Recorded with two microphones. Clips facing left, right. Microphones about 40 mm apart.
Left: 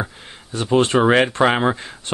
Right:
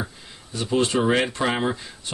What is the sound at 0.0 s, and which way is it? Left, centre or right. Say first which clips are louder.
Speech: left 5 dB; left.